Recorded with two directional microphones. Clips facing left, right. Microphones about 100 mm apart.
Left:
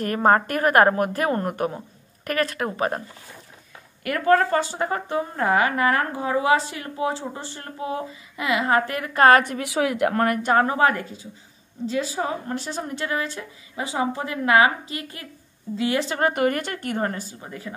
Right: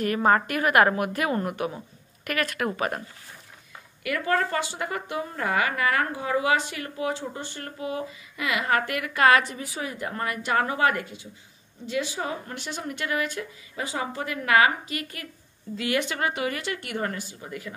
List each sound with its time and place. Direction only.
0.0 s speech: 40° left (ahead or behind)
4.0 s speech: 40° left (ahead or behind); by 9.7 s 55° left (ahead or behind)
9.7 s speech: 90° left; by 17.7 s 30° left (ahead or behind)